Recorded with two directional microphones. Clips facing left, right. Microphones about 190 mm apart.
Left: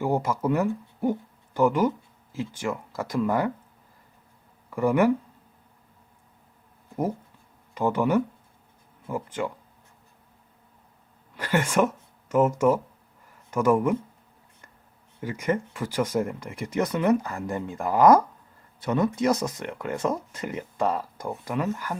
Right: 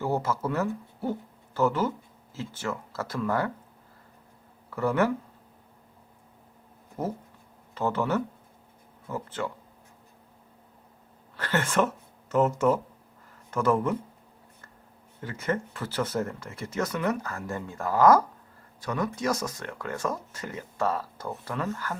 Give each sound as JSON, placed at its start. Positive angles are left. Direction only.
{"t": 0.0, "sound": "speech", "side_deg": 15}
{"t": 4.7, "sound": "speech", "side_deg": 10}
{"t": 7.7, "sound": "speech", "side_deg": 15}
{"t": 11.3, "sound": "speech", "side_deg": 10}
{"t": 15.2, "sound": "speech", "side_deg": 10}